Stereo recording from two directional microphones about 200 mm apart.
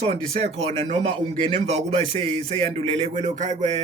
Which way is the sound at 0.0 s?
30° right (ahead or behind).